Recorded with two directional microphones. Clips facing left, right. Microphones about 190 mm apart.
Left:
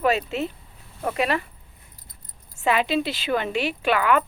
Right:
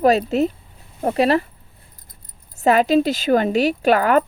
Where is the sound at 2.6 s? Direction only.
40° right (ahead or behind).